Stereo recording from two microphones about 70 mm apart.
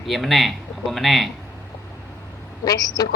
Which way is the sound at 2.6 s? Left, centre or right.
Left.